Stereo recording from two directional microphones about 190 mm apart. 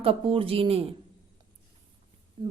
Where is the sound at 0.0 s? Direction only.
30° right (ahead or behind).